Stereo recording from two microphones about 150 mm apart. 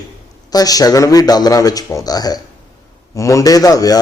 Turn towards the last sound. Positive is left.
turn(degrees=25)  # may be behind; listen again after turning